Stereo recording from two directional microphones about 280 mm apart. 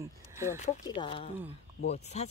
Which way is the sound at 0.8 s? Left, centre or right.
Centre.